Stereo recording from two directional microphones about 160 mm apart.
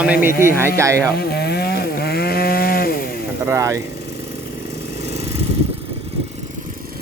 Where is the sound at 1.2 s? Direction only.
85° left.